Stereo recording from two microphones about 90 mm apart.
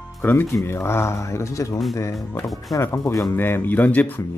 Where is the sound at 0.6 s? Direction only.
30° left (ahead or behind).